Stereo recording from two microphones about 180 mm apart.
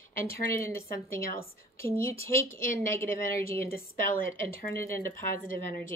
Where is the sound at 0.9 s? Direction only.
55° left (ahead or behind).